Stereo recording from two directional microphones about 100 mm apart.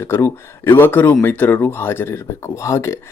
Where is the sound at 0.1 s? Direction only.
20° left (ahead or behind).